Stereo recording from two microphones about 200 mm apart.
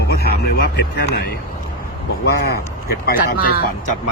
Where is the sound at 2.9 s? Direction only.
50° left (ahead or behind).